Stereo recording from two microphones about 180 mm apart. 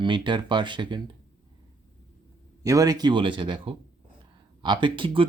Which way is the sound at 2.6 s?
20° right (ahead or behind).